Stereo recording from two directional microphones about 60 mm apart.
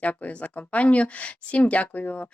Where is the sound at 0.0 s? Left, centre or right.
Left.